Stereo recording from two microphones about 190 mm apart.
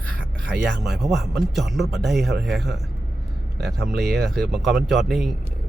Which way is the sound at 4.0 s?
Centre (ahead or behind).